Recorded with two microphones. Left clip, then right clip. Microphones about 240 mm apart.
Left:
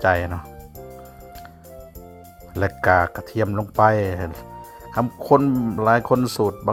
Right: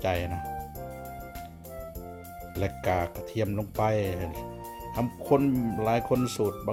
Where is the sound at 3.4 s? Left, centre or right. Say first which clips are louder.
Left 11 dB; centre.